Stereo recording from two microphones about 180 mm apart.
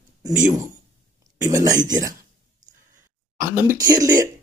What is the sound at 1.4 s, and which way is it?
Speech, 20° right (ahead or behind).